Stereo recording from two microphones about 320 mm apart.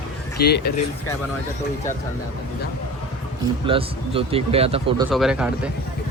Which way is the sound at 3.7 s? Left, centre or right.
Centre.